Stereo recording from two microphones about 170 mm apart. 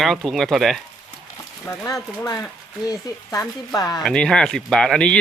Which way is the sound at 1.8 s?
20° left (ahead or behind).